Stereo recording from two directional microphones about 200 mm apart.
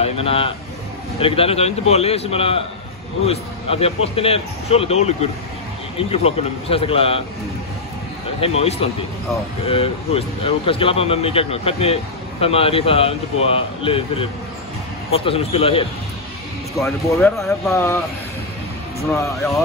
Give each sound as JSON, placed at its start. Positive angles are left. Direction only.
{"t": 0.0, "sound": "a man's voice", "side_deg": 30}
{"t": 8.4, "sound": "speech", "side_deg": 30}
{"t": 17.0, "sound": "speech", "side_deg": 15}
{"t": 19.1, "sound": "speech", "side_deg": 15}